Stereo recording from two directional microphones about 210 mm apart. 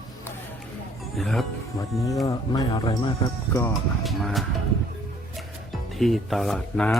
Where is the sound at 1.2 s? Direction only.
Centre (ahead or behind).